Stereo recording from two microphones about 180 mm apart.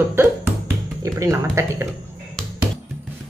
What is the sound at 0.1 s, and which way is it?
Music, 15° right (ahead or behind).